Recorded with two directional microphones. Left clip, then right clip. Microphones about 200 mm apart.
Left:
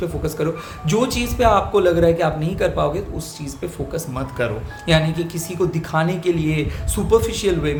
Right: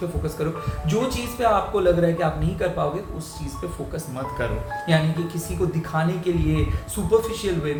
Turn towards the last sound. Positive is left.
turn(degrees=40)  # may be behind; listen again after turning